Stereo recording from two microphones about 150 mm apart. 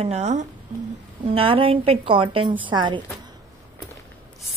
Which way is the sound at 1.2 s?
40° right (ahead or behind).